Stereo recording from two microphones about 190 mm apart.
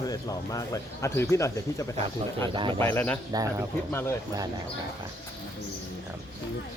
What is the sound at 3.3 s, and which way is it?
Speech, 20° right (ahead or behind).